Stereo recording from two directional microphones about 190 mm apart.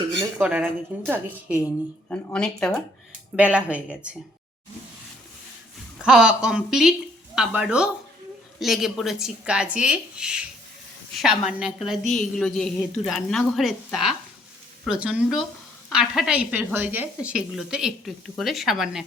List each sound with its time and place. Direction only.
0.1 s dishes: 15° right (ahead or behind)
0.4 s a woman's voice: 10° right (ahead or behind)
2.0 s a woman's voice: 5° left (ahead or behind)
3.3 s a woman's voice: 5° right (ahead or behind)
6.0 s a woman's voice: 5° right (ahead or behind)